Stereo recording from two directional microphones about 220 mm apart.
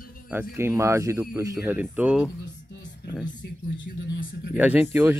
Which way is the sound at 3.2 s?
50° left (ahead or behind).